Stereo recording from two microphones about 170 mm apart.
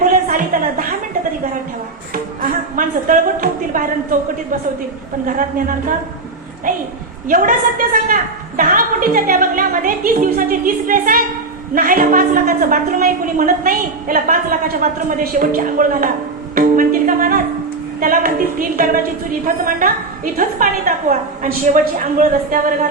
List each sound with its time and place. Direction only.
0.0 s a sound: 55° right (ahead or behind)
2.1 s music: 55° right (ahead or behind)
5.2 s a woman's voice: 50° right (ahead or behind)
7.3 s a woman's voice: 55° right (ahead or behind)
20.3 s a woman's voice: 50° right (ahead or behind)